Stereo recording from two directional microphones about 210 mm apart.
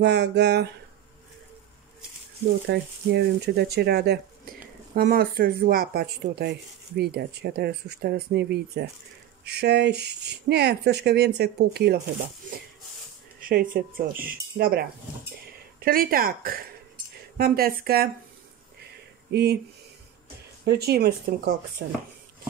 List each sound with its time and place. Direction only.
0.0 s speech: 55° right (ahead or behind)
2.7 s speech: 55° right (ahead or behind)
13.4 s speech: 45° right (ahead or behind)
19.3 s speech: 50° right (ahead or behind)
20.6 s speech: 50° right (ahead or behind)